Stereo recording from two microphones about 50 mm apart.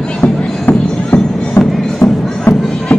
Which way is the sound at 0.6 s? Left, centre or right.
Left.